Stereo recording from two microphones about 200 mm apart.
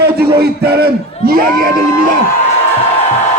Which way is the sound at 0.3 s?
50° right (ahead or behind).